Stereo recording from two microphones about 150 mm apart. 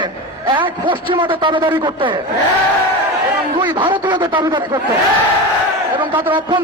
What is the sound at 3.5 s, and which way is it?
A man's voice, 30° right (ahead or behind).